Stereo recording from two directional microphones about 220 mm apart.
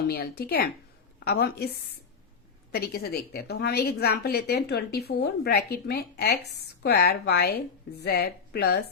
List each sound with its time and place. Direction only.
0.1 s a woman's voice: 45° left (ahead or behind)